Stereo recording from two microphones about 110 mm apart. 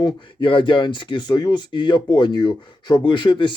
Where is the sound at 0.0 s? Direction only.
50° left (ahead or behind).